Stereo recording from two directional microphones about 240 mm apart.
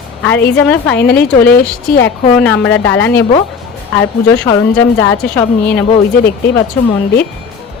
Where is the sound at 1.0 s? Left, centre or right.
Left.